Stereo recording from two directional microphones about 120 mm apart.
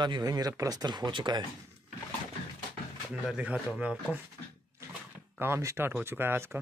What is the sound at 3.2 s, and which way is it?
Speech, 10° right (ahead or behind).